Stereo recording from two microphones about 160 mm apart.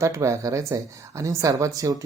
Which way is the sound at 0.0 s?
20° right (ahead or behind).